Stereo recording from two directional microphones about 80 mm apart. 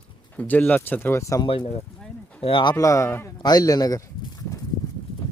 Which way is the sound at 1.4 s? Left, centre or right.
Left.